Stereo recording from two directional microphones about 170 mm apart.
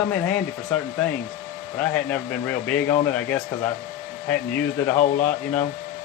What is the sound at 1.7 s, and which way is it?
Speech, 5° left (ahead or behind).